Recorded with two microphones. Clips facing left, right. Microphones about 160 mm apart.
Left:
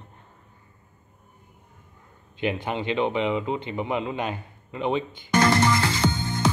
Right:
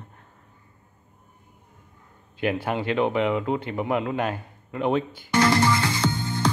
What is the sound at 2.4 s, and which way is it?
Speech, 5° right (ahead or behind).